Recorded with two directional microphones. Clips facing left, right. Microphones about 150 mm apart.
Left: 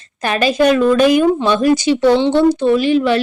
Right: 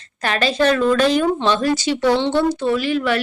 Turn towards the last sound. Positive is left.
turn(degrees=20)  # may be behind; listen again after turning